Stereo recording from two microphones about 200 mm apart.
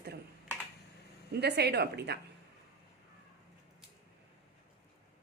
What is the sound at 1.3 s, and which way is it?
Speech, 55° right (ahead or behind).